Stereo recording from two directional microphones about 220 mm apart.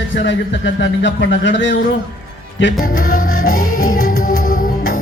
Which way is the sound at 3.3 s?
70° left (ahead or behind).